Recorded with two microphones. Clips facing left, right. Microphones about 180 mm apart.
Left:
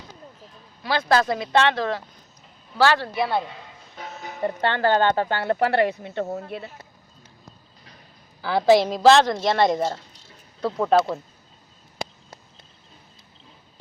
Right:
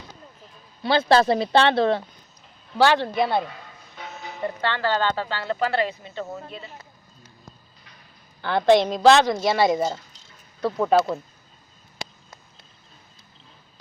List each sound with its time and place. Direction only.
0.8 s speech: 30° right (ahead or behind)
2.7 s speech: 20° right (ahead or behind)
3.9 s speech: 45° left (ahead or behind)
8.4 s a woman's voice: 5° left (ahead or behind)